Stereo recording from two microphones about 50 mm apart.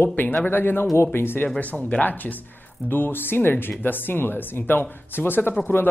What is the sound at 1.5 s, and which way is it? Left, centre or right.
Speech, left.